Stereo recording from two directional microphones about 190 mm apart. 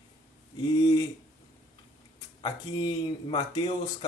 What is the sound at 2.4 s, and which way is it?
Speech, 20° left (ahead or behind).